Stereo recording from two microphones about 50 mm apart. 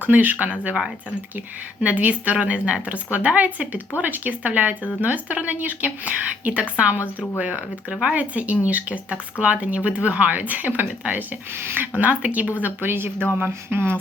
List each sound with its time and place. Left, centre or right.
0.0 s speech: right
1.8 s speech: right
12.6 s speech: right